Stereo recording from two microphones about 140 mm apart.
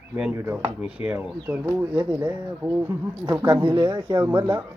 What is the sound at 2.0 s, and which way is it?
Speech, 30° right (ahead or behind).